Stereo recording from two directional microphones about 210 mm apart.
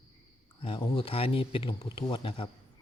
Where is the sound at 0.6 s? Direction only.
25° left (ahead or behind).